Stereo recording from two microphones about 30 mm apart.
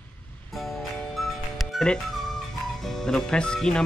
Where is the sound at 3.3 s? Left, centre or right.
Left.